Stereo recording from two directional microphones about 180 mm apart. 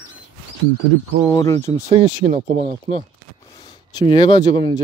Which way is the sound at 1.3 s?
20° left (ahead or behind).